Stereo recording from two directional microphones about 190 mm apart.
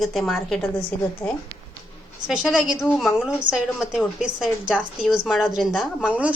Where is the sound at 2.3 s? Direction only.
5° right (ahead or behind).